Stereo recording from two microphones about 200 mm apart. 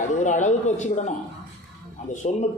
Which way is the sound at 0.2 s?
40° left (ahead or behind).